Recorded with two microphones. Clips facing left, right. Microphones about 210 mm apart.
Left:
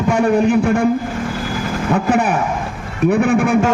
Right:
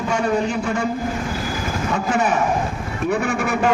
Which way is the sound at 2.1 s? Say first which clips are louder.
Left 2 dB; 55° left (ahead or behind).